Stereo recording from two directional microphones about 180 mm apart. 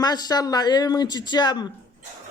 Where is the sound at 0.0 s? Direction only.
20° left (ahead or behind).